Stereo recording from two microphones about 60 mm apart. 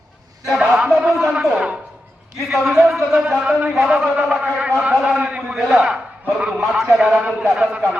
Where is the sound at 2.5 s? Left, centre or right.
Centre.